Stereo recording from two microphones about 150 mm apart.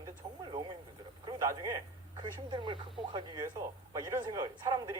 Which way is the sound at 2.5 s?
35° right (ahead or behind).